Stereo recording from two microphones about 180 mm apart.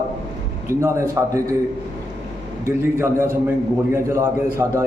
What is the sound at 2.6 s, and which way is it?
Speech, 15° right (ahead or behind).